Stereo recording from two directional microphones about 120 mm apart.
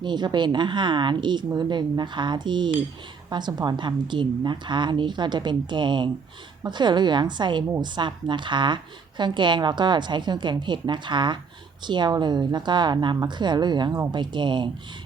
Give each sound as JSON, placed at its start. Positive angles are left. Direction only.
{"t": 0.0, "sound": "a woman's voice", "side_deg": -40}